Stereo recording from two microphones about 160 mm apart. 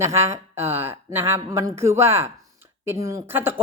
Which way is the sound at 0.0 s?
15° right (ahead or behind).